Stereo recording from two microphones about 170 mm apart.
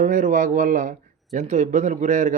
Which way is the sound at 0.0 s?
50° right (ahead or behind).